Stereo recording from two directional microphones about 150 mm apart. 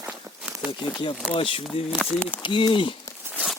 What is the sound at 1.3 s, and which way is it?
Speech, 35° left (ahead or behind).